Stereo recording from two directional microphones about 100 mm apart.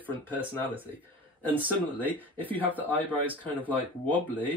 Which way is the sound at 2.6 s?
15° right (ahead or behind).